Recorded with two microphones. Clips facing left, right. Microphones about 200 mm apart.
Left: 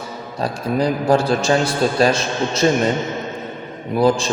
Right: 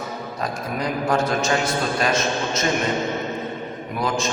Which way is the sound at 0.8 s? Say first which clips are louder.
Left 5 dB; 30° left (ahead or behind).